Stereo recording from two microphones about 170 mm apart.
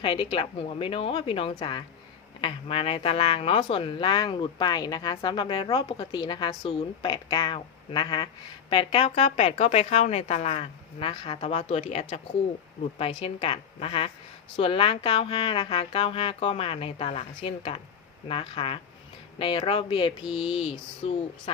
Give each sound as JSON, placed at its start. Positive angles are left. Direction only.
{"t": 0.0, "sound": "speech", "side_deg": 30}